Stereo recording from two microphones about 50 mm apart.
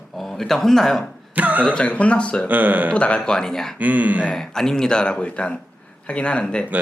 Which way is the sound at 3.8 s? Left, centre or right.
Right.